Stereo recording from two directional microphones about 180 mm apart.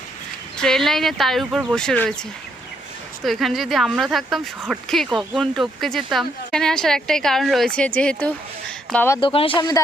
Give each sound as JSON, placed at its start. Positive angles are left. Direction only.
{"t": 0.6, "sound": "speech", "side_deg": 0}
{"t": 3.2, "sound": "speech", "side_deg": 0}
{"t": 9.2, "sound": "speech", "side_deg": 30}